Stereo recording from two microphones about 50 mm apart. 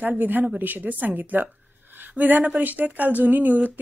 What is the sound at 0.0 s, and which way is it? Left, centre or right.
A woman's voice, right.